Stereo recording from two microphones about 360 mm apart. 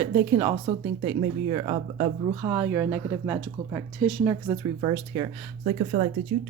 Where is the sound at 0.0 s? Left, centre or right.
Centre.